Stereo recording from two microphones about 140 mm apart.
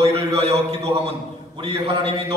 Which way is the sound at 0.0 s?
45° right (ahead or behind).